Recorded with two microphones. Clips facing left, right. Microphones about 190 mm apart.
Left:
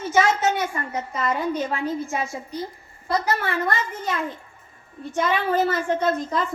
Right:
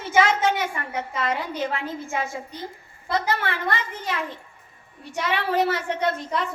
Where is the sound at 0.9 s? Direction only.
70° right (ahead or behind).